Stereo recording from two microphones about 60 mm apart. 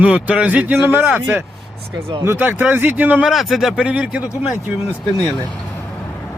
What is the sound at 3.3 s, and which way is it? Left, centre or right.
Speech, centre.